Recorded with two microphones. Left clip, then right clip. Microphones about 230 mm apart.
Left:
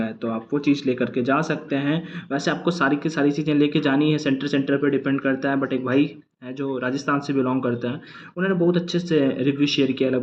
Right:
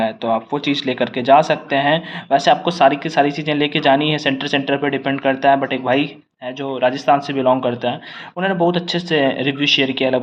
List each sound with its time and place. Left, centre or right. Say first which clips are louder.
0.2 s speech: right 7 dB; centre
6.9 s speech: right 7 dB; right
8.7 s speech: right 3 dB; centre